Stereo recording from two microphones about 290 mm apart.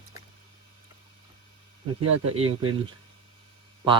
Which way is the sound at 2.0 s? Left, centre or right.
Right.